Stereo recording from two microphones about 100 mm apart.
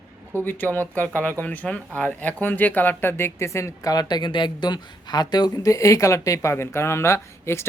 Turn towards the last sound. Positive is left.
turn(degrees=25)  # may be behind; listen again after turning